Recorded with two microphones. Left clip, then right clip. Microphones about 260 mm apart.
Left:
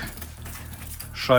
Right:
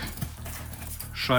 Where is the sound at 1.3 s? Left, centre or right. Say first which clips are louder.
Left 5 dB; centre.